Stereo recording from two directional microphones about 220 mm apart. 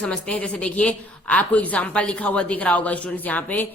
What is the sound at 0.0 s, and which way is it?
A woman's voice, 5° left (ahead or behind).